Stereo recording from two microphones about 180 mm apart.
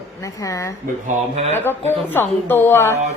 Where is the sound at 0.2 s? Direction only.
20° left (ahead or behind).